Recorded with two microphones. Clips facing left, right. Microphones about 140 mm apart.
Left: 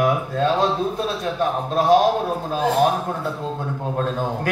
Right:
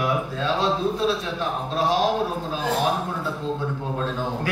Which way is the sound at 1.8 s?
50° left (ahead or behind).